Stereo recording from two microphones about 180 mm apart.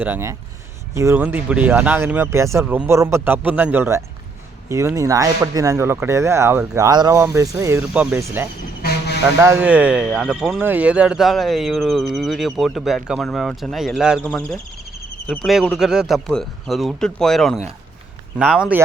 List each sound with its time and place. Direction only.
0.0 s speech: 15° right (ahead or behind)
8.8 s vehicle: 65° left (ahead or behind)
9.4 s speech: 10° right (ahead or behind)